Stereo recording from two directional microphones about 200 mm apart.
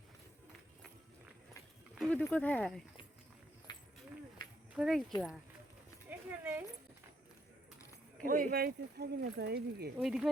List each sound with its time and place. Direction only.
2.0 s horse: 5° left (ahead or behind)
2.2 s speech: 10° left (ahead or behind)
3.7 s a sound: 20° left (ahead or behind)
4.7 s speech: centre (ahead or behind)
6.1 s a sound: 10° right (ahead or behind)
8.2 s speech: 45° right (ahead or behind)
10.0 s speech: centre (ahead or behind)